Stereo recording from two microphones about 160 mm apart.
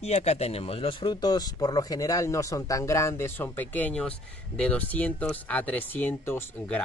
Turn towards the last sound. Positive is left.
turn(degrees=15)  # may be behind; listen again after turning